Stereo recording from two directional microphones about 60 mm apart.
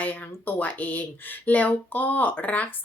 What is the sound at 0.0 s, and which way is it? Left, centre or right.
Speech, left.